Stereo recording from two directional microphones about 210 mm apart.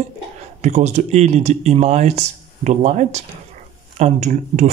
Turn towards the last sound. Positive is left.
turn(degrees=-35)  # may be behind; listen again after turning